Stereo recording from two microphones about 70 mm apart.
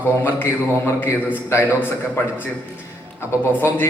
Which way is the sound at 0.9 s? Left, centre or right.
Left.